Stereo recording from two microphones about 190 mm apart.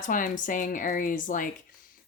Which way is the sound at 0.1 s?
45° left (ahead or behind).